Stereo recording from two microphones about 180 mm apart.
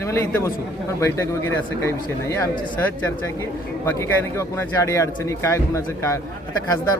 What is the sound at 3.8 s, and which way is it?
Speech, 15° left (ahead or behind).